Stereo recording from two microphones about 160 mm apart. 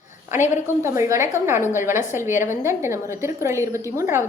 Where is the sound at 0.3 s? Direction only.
15° right (ahead or behind).